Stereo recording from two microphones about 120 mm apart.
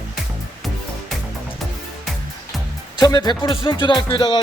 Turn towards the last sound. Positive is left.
turn(degrees=40)  # may be behind; listen again after turning